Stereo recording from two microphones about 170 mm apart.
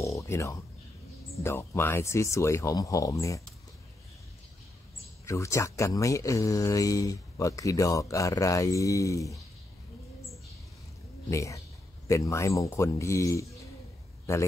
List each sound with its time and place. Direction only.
0.0 s a sound: 15° left (ahead or behind)
1.4 s speech: 15° left (ahead or behind)
5.2 s speech: 15° left (ahead or behind)
11.2 s speech: 20° left (ahead or behind)